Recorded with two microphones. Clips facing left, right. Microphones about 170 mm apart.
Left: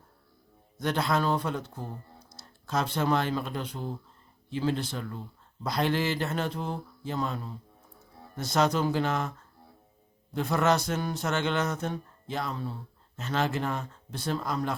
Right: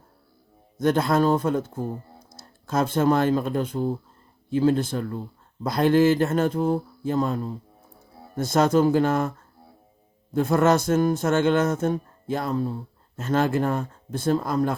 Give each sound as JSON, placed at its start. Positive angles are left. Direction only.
{"t": 0.8, "sound": "speech", "side_deg": -50}
{"t": 10.3, "sound": "speech", "side_deg": -50}